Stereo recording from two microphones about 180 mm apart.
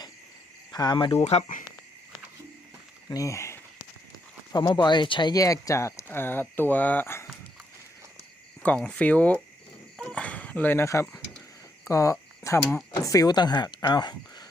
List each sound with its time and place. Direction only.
0.7 s cricket: 20° left (ahead or behind)
1.2 s speech: 40° left (ahead or behind)
3.1 s speech: 15° left (ahead or behind)
8.6 s speech: 5° left (ahead or behind)
10.0 s a sound: 5° left (ahead or behind)
11.9 s speech: 15° left (ahead or behind)